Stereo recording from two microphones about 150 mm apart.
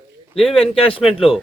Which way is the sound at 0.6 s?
40° left (ahead or behind).